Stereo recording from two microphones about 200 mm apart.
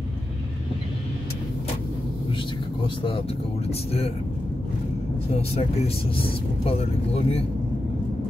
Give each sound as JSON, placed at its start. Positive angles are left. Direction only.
{"t": 6.1, "sound": "speech", "side_deg": 30}